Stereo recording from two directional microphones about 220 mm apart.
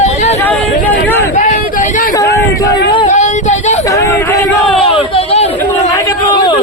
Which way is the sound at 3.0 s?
35° left (ahead or behind).